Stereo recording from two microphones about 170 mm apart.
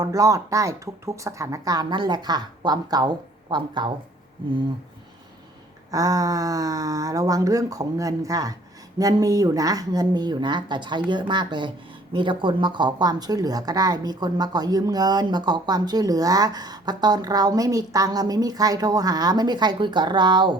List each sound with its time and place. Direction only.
0.0 s speech: 20° right (ahead or behind)
5.9 s speech: 20° right (ahead or behind)